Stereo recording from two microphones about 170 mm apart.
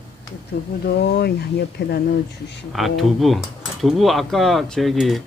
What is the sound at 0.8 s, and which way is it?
Speech, 70° left (ahead or behind).